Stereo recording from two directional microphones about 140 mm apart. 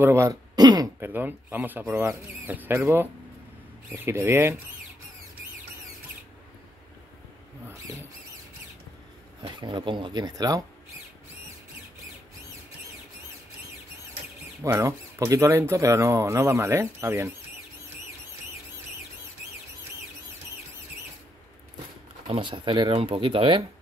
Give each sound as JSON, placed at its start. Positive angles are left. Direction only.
{"t": 0.0, "sound": "speech", "side_deg": -20}
{"t": 1.0, "sound": "speech", "side_deg": -15}
{"t": 9.4, "sound": "speech", "side_deg": -35}
{"t": 14.6, "sound": "speech", "side_deg": -20}
{"t": 22.3, "sound": "speech", "side_deg": -35}